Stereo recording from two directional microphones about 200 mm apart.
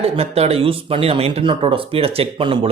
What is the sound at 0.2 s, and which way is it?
Speech, 30° right (ahead or behind).